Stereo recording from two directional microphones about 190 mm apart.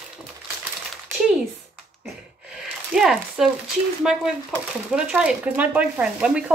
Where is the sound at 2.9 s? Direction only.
5° right (ahead or behind).